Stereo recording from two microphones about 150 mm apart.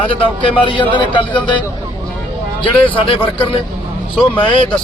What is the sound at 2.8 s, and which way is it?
Speech, 35° left (ahead or behind).